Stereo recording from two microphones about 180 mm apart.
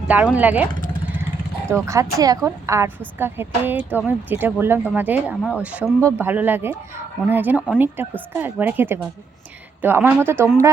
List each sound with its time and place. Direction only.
0.3 s speech: 10° right (ahead or behind)
1.7 s speech: 15° right (ahead or behind)